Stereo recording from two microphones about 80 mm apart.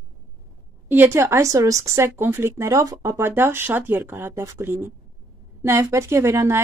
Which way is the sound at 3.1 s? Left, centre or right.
Right.